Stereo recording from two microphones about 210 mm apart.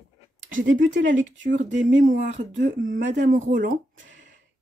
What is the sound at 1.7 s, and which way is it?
Speech, 35° right (ahead or behind).